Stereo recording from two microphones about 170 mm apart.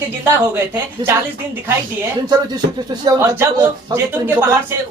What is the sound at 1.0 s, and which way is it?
Speech, 25° right (ahead or behind).